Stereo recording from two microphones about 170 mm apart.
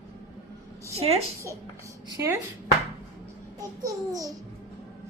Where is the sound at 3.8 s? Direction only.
20° right (ahead or behind).